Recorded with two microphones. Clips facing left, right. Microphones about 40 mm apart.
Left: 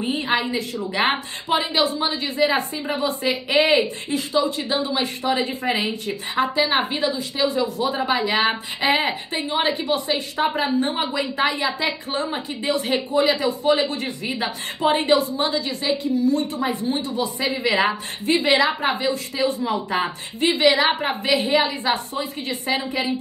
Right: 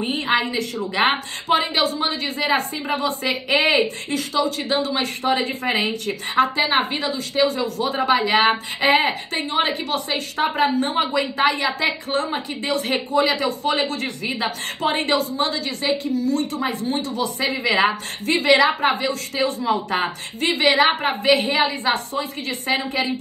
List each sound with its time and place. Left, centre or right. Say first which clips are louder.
0.0 s a woman's voice: right 1 dB; right